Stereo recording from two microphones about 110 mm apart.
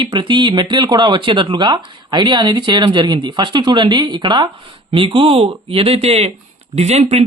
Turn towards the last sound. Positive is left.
turn(degrees=-75)  # may be behind; listen again after turning